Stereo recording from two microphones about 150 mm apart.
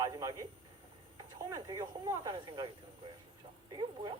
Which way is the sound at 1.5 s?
25° right (ahead or behind).